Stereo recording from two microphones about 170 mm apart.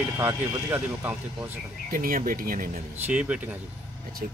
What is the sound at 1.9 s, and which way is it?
Speech, 55° right (ahead or behind).